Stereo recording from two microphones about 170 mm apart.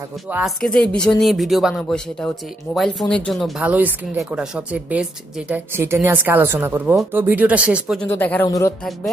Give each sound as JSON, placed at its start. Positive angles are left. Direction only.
{"t": 0.6, "sound": "a woman's voice", "side_deg": 5}
{"t": 8.0, "sound": "speech", "side_deg": 10}